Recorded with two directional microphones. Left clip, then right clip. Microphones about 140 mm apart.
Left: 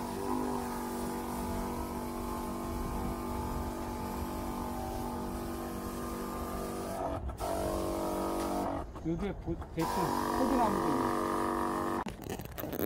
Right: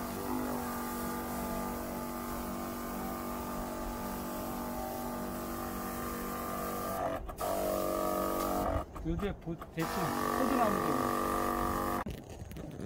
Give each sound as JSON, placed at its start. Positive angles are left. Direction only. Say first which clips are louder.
{"t": 10.0, "sound": "speech", "louder": "right 2 dB", "side_deg": -75}